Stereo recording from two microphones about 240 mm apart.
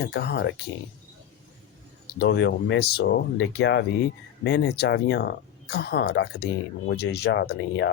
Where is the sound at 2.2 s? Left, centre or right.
Left.